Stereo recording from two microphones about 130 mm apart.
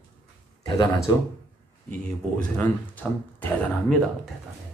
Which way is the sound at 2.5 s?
15° left (ahead or behind).